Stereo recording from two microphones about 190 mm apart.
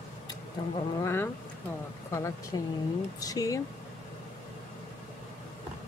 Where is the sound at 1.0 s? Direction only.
10° left (ahead or behind).